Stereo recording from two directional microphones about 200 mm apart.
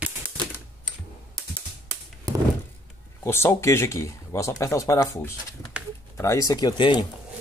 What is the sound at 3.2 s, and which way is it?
Speech, 10° left (ahead or behind).